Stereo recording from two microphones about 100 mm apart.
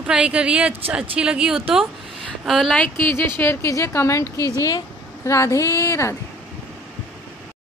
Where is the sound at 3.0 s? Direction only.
20° left (ahead or behind).